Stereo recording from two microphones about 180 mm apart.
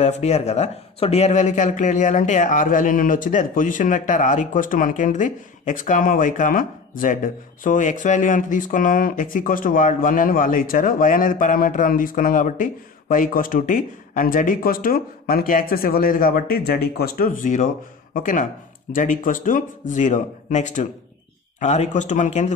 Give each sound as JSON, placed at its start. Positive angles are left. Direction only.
{"t": 0.0, "sound": "a man's voice", "side_deg": 40}